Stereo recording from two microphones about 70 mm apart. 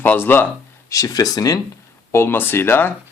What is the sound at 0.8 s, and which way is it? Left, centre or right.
Speech, left.